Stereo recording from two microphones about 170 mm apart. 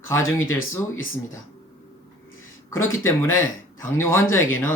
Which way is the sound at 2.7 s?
15° left (ahead or behind).